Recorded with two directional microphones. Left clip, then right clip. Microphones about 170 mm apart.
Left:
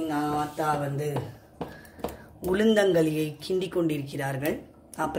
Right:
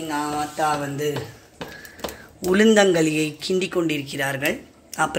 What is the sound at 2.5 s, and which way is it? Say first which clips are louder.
Speech: right 6 dB; 25° right (ahead or behind).